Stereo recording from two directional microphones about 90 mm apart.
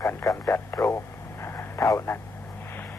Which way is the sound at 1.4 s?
30° left (ahead or behind).